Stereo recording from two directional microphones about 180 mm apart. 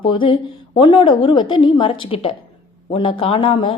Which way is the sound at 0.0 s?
25° left (ahead or behind).